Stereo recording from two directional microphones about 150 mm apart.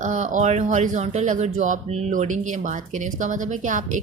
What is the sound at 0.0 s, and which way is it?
A woman's voice, 55° right (ahead or behind).